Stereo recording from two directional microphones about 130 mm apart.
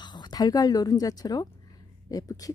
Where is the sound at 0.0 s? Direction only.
35° left (ahead or behind).